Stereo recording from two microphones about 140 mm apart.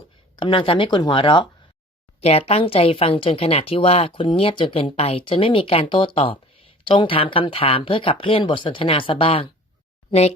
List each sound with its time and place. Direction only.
0.3 s a woman's voice: 40° left (ahead or behind)
2.2 s a woman's voice: 45° left (ahead or behind)
10.1 s speech: 50° left (ahead or behind)